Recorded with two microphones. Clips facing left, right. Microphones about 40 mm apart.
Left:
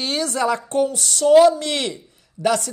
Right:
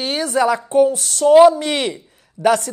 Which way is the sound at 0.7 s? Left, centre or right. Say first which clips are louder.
Right 6 dB; right.